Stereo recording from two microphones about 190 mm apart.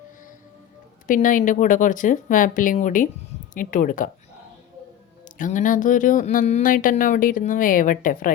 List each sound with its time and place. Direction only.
1.0 s speech: 45° left (ahead or behind)
5.4 s speech: 40° left (ahead or behind)